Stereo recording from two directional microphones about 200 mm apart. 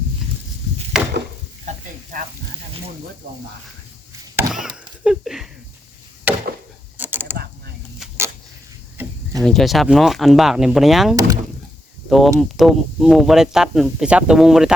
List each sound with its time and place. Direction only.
0.9 s wood: 5° right (ahead or behind)
3.2 s speech: 55° right (ahead or behind)
4.4 s a sound: 5° right (ahead or behind)
6.3 s chop: 5° right (ahead or behind)
6.9 s mechanisms: 10° right (ahead or behind)
9.4 s speech: centre (ahead or behind)